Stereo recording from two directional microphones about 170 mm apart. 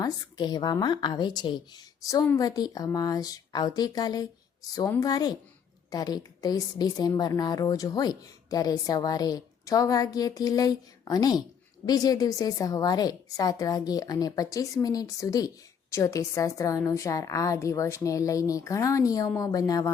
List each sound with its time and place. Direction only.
0.0 s a woman's voice: 25° left (ahead or behind)